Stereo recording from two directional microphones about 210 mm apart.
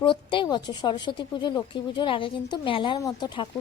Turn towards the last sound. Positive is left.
turn(degrees=20)  # may be behind; listen again after turning